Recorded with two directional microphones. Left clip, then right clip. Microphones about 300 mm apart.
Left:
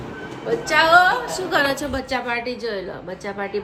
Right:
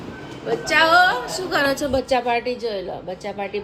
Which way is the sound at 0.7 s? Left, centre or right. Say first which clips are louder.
Left 1 dB; centre.